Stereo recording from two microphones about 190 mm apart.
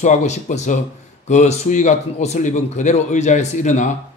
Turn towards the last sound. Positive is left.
turn(degrees=40)  # may be behind; listen again after turning